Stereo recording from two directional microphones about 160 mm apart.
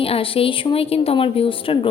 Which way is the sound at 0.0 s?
35° left (ahead or behind).